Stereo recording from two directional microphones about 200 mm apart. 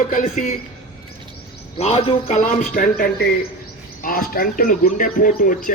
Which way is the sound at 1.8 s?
30° left (ahead or behind).